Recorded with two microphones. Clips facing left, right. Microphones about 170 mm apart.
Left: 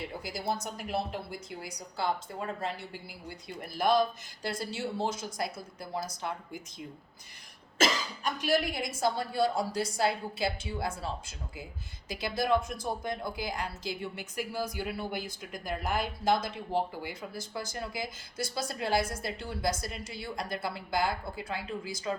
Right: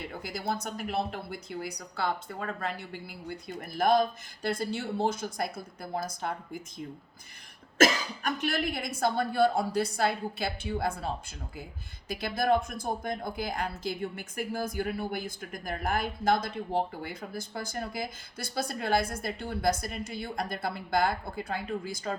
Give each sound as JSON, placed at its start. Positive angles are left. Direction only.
{"t": 0.2, "sound": "speech", "side_deg": -55}